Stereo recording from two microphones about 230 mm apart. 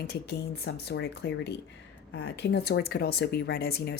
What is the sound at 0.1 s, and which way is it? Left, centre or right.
Speech, left.